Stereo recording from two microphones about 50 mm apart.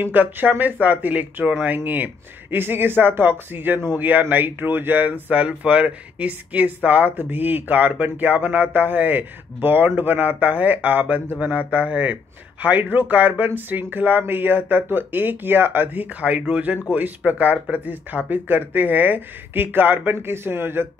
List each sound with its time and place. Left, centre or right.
0.0 s speech: right
2.5 s speech: right